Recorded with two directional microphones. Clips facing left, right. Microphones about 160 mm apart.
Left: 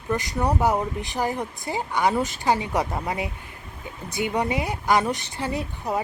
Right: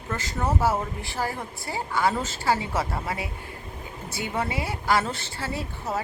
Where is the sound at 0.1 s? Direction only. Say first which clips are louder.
Left 4 dB; 15° left (ahead or behind).